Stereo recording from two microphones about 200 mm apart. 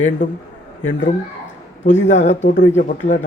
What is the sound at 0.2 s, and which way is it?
Speech, 40° left (ahead or behind).